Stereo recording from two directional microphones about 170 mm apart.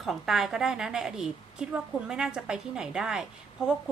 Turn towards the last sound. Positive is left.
turn(degrees=-5)  # may be behind; listen again after turning